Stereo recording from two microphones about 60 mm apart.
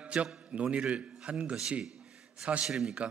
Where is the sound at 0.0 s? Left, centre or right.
Right.